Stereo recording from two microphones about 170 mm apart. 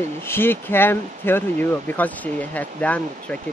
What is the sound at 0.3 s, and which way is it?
Speech, 15° left (ahead or behind).